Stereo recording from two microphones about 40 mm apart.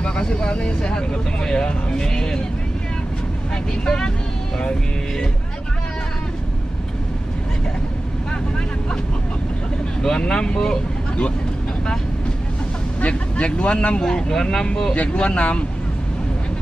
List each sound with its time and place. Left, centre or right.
0.0 s speech: left
3.8 s speech: centre
10.0 s speech: centre
13.0 s speech: left
15.0 s speech: left